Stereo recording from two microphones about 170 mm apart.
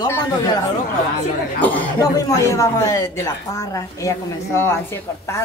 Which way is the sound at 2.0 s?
20° left (ahead or behind).